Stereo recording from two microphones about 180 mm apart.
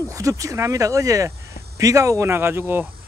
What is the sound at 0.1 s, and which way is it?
Speech, 20° right (ahead or behind).